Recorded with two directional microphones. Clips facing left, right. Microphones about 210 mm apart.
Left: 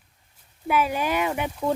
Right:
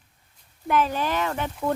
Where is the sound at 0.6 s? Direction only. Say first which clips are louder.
Even; 10° left (ahead or behind).